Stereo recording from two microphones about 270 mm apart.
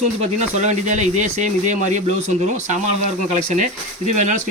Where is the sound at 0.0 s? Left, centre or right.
Right.